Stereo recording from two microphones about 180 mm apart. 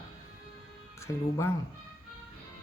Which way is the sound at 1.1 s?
20° left (ahead or behind).